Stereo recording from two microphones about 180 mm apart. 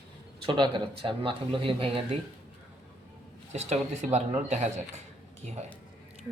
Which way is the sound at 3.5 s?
40° right (ahead or behind).